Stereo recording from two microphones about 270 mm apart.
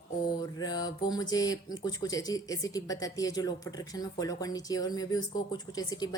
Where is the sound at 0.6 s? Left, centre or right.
Centre.